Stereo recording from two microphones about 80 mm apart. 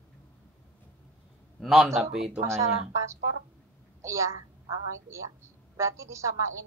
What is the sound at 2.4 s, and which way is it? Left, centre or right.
A woman's voice, right.